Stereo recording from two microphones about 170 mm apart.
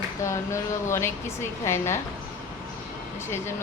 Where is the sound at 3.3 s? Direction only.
15° left (ahead or behind).